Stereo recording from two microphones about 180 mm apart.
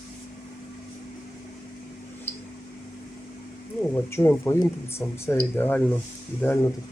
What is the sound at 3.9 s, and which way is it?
Speech, 15° left (ahead or behind).